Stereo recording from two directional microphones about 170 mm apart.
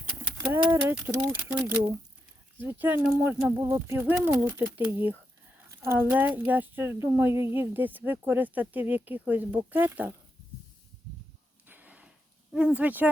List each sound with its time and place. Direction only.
0.5 s speech: 10° right (ahead or behind)
11.7 s a sound: 10° right (ahead or behind)
12.5 s speech: 5° right (ahead or behind)